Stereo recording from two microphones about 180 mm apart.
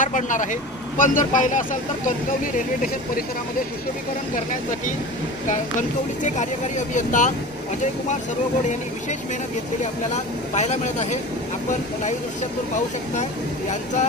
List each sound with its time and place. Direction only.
0.0 s speech: 45° left (ahead or behind)
5.5 s speech: 45° left (ahead or behind)
10.1 s speech: 40° left (ahead or behind)
13.1 s speech: 40° left (ahead or behind)